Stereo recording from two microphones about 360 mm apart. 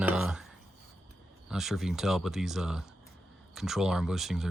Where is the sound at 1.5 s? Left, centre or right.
Centre.